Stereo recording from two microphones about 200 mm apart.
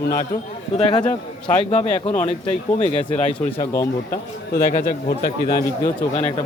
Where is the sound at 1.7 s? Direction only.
30° left (ahead or behind).